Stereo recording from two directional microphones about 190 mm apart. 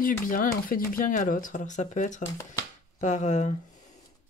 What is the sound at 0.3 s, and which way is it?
Speech, 45° left (ahead or behind).